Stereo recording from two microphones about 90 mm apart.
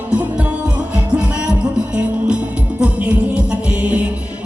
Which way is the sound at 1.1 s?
10° right (ahead or behind).